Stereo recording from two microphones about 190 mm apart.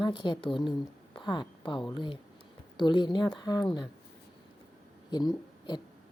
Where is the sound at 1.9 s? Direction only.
25° left (ahead or behind).